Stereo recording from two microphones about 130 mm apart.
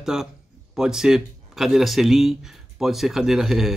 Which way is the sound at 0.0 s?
5° right (ahead or behind).